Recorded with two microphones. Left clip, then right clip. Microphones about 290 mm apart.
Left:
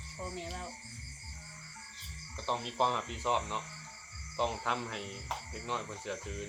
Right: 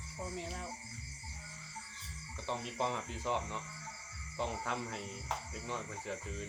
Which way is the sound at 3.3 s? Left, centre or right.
Centre.